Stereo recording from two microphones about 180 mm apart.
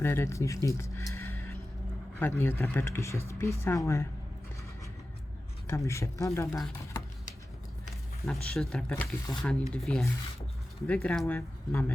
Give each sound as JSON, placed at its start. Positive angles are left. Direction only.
{"t": 0.0, "sound": "speech", "side_deg": 15}
{"t": 5.6, "sound": "speech", "side_deg": 15}
{"t": 8.2, "sound": "speech", "side_deg": 0}
{"t": 8.9, "sound": "speech", "side_deg": 15}
{"t": 9.4, "sound": "speech", "side_deg": 5}